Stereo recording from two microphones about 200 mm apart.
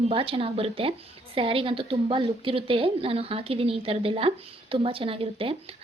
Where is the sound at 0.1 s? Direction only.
25° right (ahead or behind).